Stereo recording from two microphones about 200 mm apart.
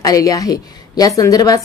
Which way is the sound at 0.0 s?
15° left (ahead or behind).